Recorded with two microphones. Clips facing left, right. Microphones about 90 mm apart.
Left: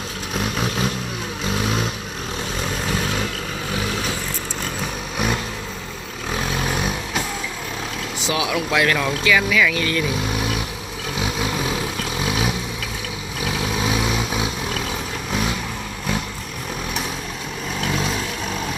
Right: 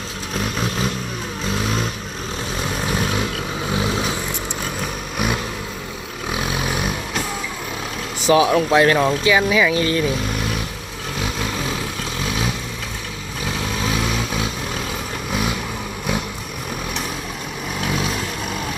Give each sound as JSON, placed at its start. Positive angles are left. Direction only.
{"t": 0.3, "sound": "vehicle", "side_deg": 0}
{"t": 3.7, "sound": "vehicle", "side_deg": -20}
{"t": 5.1, "sound": "vehicle", "side_deg": -5}
{"t": 8.3, "sound": "speech", "side_deg": -35}
{"t": 11.2, "sound": "vehicle", "side_deg": 5}
{"t": 13.6, "sound": "vehicle", "side_deg": 10}
{"t": 17.8, "sound": "vehicle", "side_deg": 0}